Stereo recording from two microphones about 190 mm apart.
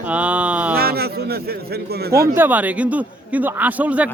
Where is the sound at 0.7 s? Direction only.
55° right (ahead or behind).